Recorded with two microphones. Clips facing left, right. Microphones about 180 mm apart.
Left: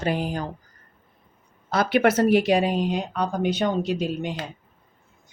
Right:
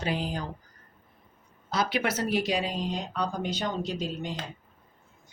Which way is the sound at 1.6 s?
60° left (ahead or behind).